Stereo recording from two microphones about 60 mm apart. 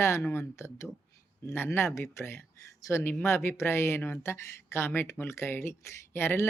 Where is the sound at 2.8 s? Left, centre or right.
Left.